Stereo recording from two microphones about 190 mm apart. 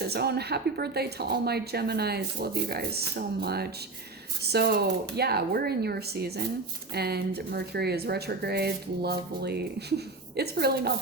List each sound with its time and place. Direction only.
0.0 s speech: 60° right (ahead or behind)